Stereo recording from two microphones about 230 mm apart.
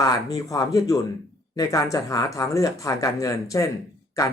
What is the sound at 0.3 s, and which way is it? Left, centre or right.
Speech, centre.